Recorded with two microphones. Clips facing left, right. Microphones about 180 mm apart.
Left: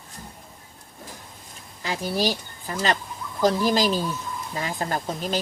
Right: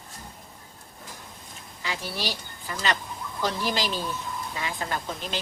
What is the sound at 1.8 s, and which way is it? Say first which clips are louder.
A woman's voice: left 7 dB; 40° left (ahead or behind).